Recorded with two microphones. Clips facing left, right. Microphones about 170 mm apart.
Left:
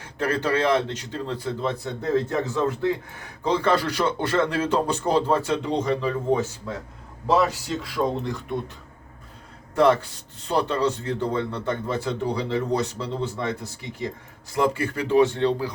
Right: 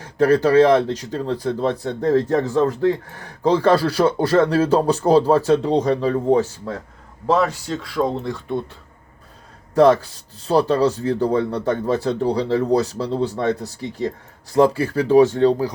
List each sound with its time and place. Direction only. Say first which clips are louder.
0.0 s speech: right 9 dB; 40° right (ahead or behind)
7.9 s speech: right 4 dB; 30° right (ahead or behind)
9.7 s speech: right 5 dB; 35° right (ahead or behind)